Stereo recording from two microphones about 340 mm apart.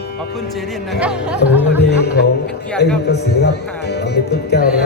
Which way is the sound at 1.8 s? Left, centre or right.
Left.